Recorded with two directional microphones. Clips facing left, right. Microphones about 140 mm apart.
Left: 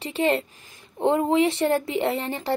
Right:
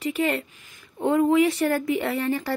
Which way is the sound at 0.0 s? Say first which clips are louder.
Left 2 dB; 25° left (ahead or behind).